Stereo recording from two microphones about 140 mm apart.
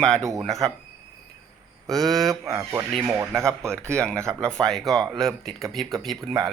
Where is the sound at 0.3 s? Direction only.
Centre (ahead or behind).